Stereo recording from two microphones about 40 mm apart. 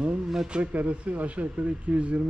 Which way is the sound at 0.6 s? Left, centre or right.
Right.